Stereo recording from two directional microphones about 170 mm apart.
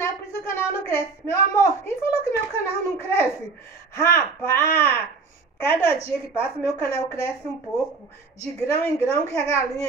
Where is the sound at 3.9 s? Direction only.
15° left (ahead or behind).